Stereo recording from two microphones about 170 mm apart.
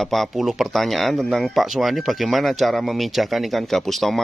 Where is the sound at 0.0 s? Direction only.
Centre (ahead or behind).